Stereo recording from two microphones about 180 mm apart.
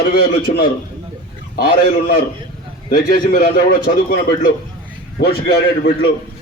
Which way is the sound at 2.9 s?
55° left (ahead or behind).